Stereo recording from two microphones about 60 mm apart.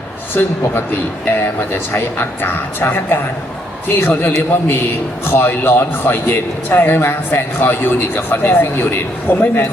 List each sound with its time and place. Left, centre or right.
0.3 s a man's voice: left